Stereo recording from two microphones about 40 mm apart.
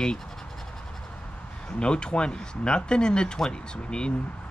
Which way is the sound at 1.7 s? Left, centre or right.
Left.